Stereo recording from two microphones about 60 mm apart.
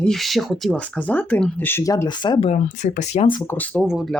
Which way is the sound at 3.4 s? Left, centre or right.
Left.